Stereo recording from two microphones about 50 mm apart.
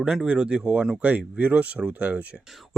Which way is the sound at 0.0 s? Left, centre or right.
Centre.